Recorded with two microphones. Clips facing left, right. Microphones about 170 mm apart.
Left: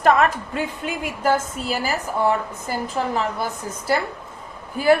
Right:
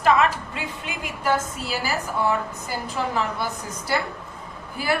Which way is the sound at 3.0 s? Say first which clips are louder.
Left 2 dB; 45° left (ahead or behind).